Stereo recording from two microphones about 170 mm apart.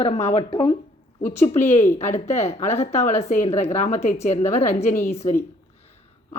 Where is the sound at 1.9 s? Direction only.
45° left (ahead or behind).